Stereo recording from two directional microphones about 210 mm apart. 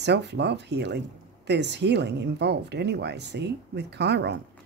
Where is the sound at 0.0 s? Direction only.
55° right (ahead or behind).